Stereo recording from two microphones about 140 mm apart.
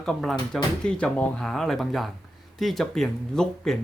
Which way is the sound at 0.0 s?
5° left (ahead or behind).